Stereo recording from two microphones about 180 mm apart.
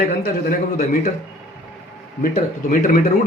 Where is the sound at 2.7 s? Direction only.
50° left (ahead or behind).